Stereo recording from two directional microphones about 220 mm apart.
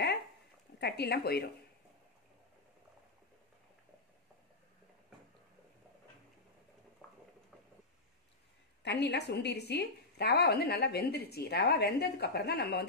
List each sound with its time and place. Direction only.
0.7 s speech: 50° left (ahead or behind)
7.0 s a sound: centre (ahead or behind)
8.8 s a woman's voice: 50° left (ahead or behind)